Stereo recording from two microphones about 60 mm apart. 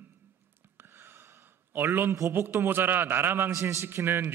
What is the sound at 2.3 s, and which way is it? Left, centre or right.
A man's voice, right.